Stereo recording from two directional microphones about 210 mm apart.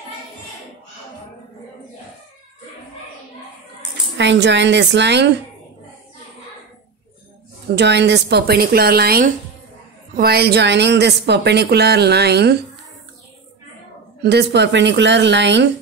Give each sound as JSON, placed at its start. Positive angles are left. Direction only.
{"t": 4.2, "sound": "a woman's voice", "side_deg": -55}
{"t": 7.7, "sound": "a woman's voice", "side_deg": -55}
{"t": 14.2, "sound": "a woman's voice", "side_deg": -50}